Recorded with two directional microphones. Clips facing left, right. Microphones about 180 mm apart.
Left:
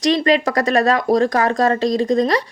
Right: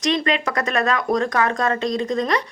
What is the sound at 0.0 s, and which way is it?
Speech, 35° left (ahead or behind).